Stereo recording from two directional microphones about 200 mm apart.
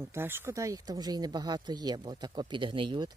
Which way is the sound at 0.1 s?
10° right (ahead or behind).